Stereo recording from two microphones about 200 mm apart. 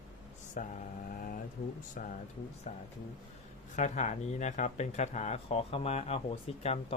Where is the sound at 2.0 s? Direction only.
40° left (ahead or behind).